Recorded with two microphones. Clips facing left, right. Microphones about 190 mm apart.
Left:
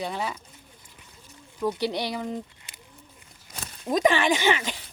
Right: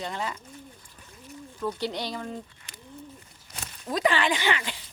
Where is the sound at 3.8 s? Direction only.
20° left (ahead or behind).